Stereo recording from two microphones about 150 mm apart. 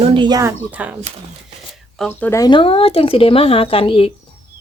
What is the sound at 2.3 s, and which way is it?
A woman's voice, 25° left (ahead or behind).